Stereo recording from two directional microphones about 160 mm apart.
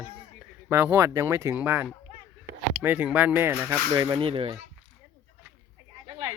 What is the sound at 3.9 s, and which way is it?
Speech, 25° right (ahead or behind).